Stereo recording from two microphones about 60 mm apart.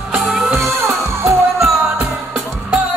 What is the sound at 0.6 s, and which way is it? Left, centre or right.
Music, right.